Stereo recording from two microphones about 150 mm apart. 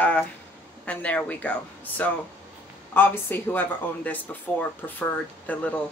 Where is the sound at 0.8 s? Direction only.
10° left (ahead or behind).